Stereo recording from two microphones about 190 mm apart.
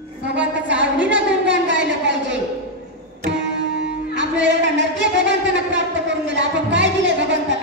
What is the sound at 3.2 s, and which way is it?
Music, 70° right (ahead or behind).